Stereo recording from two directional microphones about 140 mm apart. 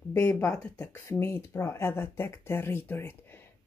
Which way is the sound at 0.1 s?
20° left (ahead or behind).